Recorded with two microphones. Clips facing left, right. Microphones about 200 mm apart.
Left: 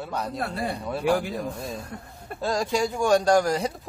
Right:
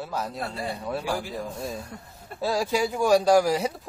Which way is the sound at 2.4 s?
5° right (ahead or behind).